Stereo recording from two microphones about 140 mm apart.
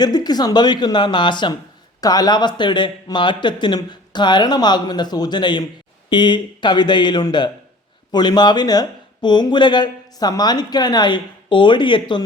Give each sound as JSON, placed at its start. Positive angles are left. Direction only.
{"t": 0.0, "sound": "speech", "side_deg": 30}